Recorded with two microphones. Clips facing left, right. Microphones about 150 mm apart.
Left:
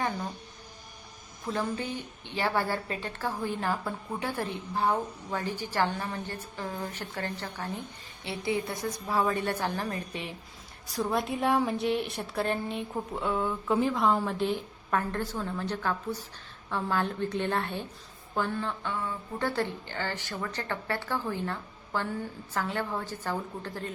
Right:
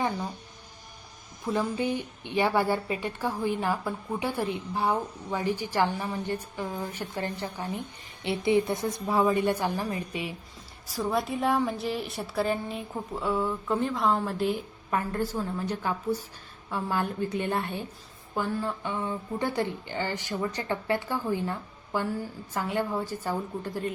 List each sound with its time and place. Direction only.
1.5 s a woman's voice: 15° right (ahead or behind)
10.8 s a woman's voice: centre (ahead or behind)